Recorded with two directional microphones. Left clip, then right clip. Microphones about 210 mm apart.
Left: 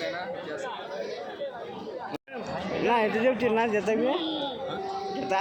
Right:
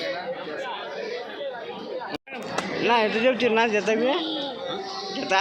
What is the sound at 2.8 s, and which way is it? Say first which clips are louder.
Speech: right 3 dB; centre (ahead or behind).